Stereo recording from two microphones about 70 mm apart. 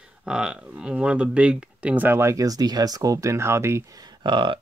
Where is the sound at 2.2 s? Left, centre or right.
Right.